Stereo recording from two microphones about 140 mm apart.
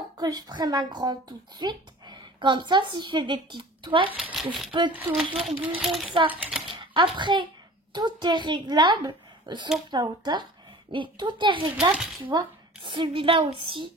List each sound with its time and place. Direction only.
0.2 s a woman's voice: 30° right (ahead or behind)
4.1 s speech: 5° right (ahead or behind)
5.3 s a woman's voice: 40° right (ahead or behind)
5.8 s a child's voice: centre (ahead or behind)
6.7 s a sound: 35° right (ahead or behind)
7.9 s a woman's voice: 30° right (ahead or behind)
11.9 s speech: centre (ahead or behind)
12.2 s a woman's voice: 30° right (ahead or behind)